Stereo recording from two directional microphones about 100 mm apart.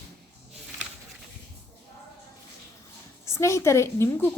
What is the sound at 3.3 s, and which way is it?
A woman's voice, 30° left (ahead or behind).